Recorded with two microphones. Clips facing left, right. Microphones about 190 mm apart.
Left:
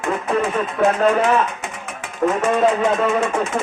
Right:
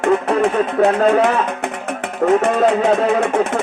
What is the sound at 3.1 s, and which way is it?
Speech, 60° right (ahead or behind).